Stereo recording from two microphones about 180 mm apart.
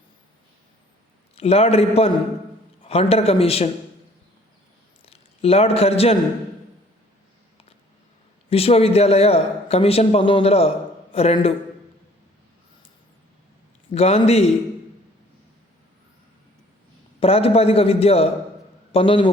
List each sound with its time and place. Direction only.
1.4 s a man's voice: 35° left (ahead or behind)
5.0 s a man's voice: 35° left (ahead or behind)
8.4 s a man's voice: 30° left (ahead or behind)
13.9 s a man's voice: 35° left (ahead or behind)
17.2 s a man's voice: 35° left (ahead or behind)